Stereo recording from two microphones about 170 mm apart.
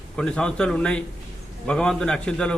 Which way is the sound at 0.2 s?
5° left (ahead or behind).